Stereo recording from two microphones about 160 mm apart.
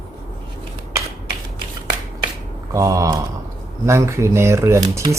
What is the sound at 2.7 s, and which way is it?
Speech, 20° right (ahead or behind).